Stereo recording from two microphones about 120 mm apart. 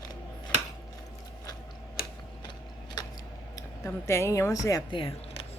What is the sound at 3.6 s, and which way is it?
Speech, 25° left (ahead or behind).